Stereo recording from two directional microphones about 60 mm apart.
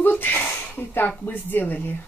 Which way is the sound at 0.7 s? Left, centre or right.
Left.